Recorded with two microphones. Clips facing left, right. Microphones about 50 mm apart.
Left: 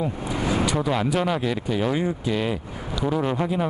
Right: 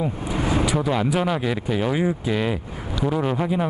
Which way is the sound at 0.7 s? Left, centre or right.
Centre.